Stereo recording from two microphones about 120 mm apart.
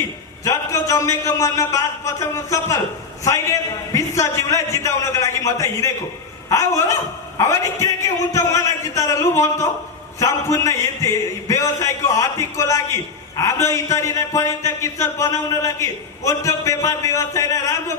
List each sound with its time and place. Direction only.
0.4 s speech: 25° left (ahead or behind)